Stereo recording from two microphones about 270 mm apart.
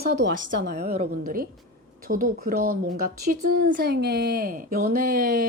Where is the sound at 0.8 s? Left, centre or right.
Right.